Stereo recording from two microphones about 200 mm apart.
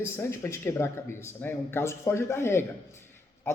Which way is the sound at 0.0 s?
15° left (ahead or behind).